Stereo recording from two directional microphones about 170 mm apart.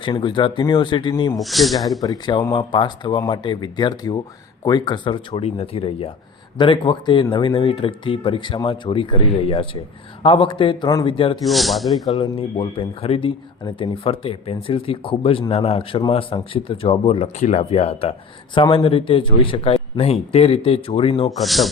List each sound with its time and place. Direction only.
0.0 s speech: 30° left (ahead or behind)
1.4 s speech: centre (ahead or behind)
2.0 s speech: 25° left (ahead or behind)
11.4 s speech: centre (ahead or behind)
12.1 s speech: 30° left (ahead or behind)
21.2 s speech: centre (ahead or behind)